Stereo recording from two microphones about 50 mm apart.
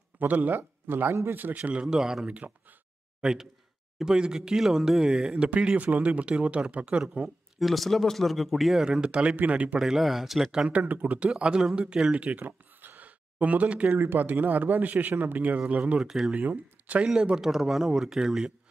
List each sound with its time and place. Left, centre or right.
0.2 s a man's voice: right
7.5 s speech: centre
8.8 s speech: centre
9.8 s speech: centre
10.7 s a man's voice: right
11.1 s speech: right
12.4 s a sound: right
13.9 s a man's voice: right
16.0 s a man's voice: centre
16.3 s a man's voice: right
17.0 s a man's voice: centre